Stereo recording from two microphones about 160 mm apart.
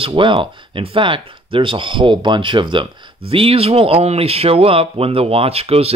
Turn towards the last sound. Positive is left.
turn(degrees=-40)  # may be behind; listen again after turning